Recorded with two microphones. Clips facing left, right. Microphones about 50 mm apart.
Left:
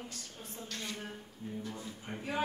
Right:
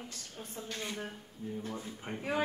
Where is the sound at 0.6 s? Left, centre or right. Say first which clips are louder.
Right 2 dB; centre.